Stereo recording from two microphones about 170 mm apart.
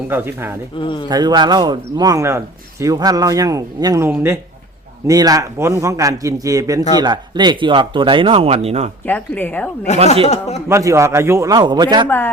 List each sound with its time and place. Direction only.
0.1 s speech: 15° right (ahead or behind)
0.8 s a man's voice: 30° left (ahead or behind)
1.0 s a man's voice: 25° right (ahead or behind)
9.0 s speech: 10° left (ahead or behind)
9.9 s speech: 40° left (ahead or behind)
10.7 s a man's voice: 20° right (ahead or behind)
12.0 s speech: 10° left (ahead or behind)